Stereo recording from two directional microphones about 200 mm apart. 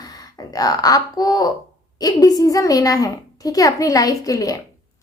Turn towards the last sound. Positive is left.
turn(degrees=15)  # may be behind; listen again after turning